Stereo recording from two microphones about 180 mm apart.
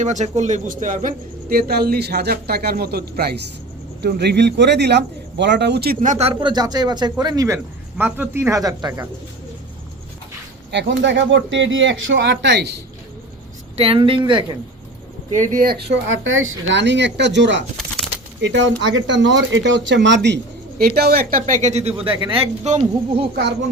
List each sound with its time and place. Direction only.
0.0 s speech: 40° right (ahead or behind); by 9.0 s 20° right (ahead or behind)
10.7 s speech: 85° right
13.7 s speech: 30° right (ahead or behind)
15.3 s speech: 45° right (ahead or behind)
15.8 s speech: 80° right
18.3 s speech: 90° right; by 23.2 s 35° right (ahead or behind)
23.3 s a child's voice: 70° right (ahead or behind)